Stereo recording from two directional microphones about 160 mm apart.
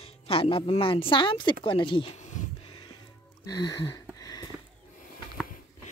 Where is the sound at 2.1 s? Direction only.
50° left (ahead or behind).